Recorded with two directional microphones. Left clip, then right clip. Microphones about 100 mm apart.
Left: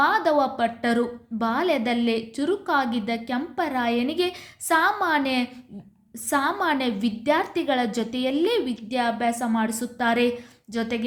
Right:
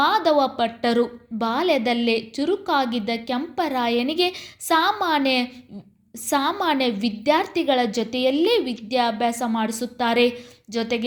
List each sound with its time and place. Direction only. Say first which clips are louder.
0.0 s a woman's voice: right 2 dB; 25° right (ahead or behind)